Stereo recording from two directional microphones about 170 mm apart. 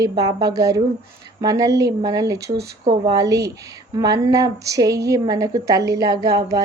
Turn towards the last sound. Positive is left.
turn(degrees=-20)  # may be behind; listen again after turning